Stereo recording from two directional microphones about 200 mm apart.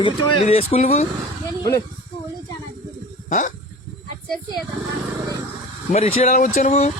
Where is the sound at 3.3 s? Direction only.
40° left (ahead or behind).